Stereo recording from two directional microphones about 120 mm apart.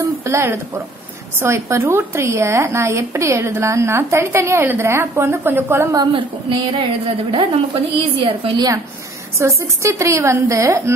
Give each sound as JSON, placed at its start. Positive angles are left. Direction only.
{"t": 0.0, "sound": "a woman's voice", "side_deg": -25}
{"t": 6.8, "sound": "a woman's voice", "side_deg": -45}
{"t": 8.5, "sound": "a woman's voice", "side_deg": -35}
{"t": 9.4, "sound": "a woman's voice", "side_deg": -25}